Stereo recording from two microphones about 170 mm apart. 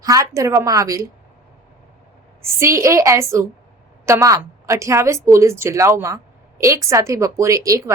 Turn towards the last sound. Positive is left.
turn(degrees=-20)  # may be behind; listen again after turning